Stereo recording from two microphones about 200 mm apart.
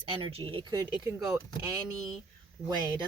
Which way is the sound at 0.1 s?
30° right (ahead or behind).